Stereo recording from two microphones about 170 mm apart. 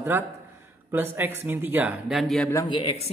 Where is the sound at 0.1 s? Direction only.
10° right (ahead or behind).